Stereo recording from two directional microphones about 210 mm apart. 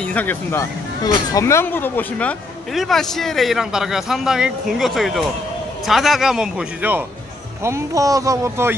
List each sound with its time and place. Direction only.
0.0 s speech: 5° left (ahead or behind); by 8.7 s 15° right (ahead or behind)